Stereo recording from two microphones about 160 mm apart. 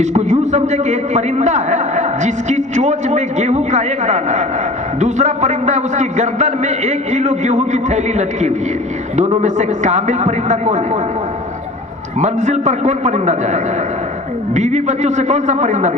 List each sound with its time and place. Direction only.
0.0 s a man's voice: 45° right (ahead or behind)
12.2 s a man's voice: 45° right (ahead or behind)